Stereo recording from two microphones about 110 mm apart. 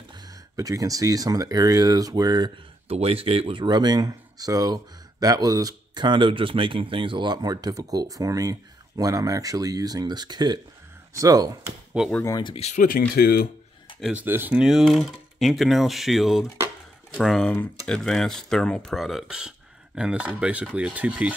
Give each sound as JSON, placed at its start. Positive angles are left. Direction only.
{"t": 0.1, "sound": "speech", "side_deg": -35}
{"t": 2.9, "sound": "speech", "side_deg": -60}
{"t": 3.6, "sound": "speech", "side_deg": -40}
{"t": 12.0, "sound": "speech", "side_deg": -10}
{"t": 12.3, "sound": "speech", "side_deg": 35}
{"t": 12.5, "sound": "speech", "side_deg": 80}
{"t": 14.1, "sound": "speech", "side_deg": -20}
{"t": 14.5, "sound": "speech", "side_deg": -5}